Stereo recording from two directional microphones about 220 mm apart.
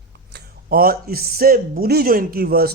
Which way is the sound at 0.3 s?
45° right (ahead or behind).